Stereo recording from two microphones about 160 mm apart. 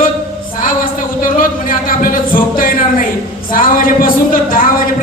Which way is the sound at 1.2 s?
60° left (ahead or behind).